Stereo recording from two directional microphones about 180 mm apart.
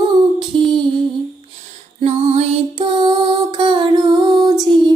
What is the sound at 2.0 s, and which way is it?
Music, 35° right (ahead or behind).